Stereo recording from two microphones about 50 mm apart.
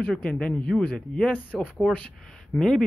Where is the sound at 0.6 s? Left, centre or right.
Left.